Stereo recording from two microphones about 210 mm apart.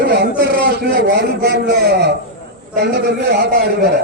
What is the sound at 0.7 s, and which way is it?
A man's voice, 50° right (ahead or behind).